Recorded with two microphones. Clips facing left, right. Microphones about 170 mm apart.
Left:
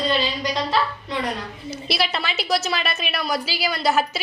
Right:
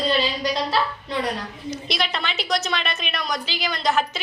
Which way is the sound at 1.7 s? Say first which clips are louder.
Left 2 dB; 5° left (ahead or behind).